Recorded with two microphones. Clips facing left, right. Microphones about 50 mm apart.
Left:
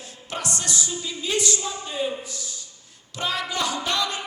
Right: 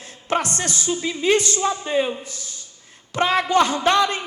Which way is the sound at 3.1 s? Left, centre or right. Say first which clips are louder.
Right 10 dB; right.